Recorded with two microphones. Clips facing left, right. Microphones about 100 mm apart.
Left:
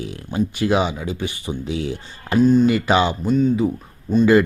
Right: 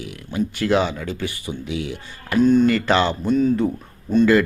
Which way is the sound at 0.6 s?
15° left (ahead or behind).